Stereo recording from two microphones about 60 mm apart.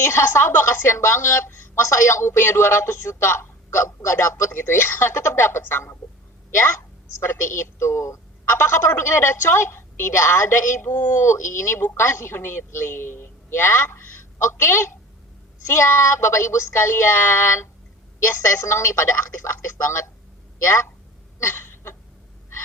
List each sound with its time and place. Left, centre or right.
0.1 s a woman's voice: left
7.2 s a woman's voice: left
21.3 s a sound: left